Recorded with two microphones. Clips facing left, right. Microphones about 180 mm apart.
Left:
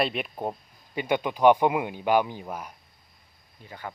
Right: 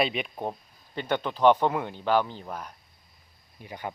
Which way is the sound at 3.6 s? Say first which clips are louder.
Right 3 dB; 20° right (ahead or behind).